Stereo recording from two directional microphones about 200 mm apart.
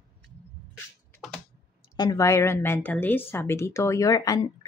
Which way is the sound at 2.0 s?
15° left (ahead or behind).